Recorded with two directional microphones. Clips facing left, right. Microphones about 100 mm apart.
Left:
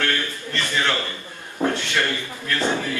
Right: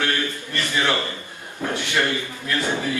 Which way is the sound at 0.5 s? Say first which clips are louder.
Right 1 dB; 15° right (ahead or behind).